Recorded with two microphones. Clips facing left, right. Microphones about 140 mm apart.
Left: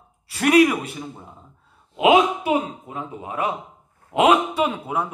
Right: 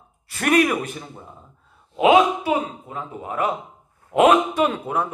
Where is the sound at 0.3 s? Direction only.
10° left (ahead or behind).